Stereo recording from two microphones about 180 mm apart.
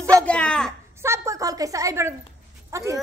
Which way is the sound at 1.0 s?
15° right (ahead or behind).